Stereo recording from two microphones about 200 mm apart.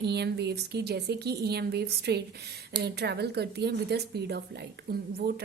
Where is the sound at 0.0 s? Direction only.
55° right (ahead or behind).